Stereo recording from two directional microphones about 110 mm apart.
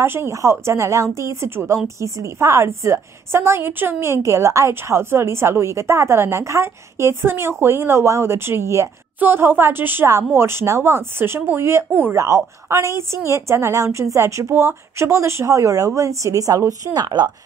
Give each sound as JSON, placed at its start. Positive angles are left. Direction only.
{"t": 0.0, "sound": "a woman's voice", "side_deg": -20}